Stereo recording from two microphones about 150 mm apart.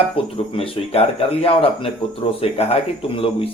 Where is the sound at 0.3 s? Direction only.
40° left (ahead or behind).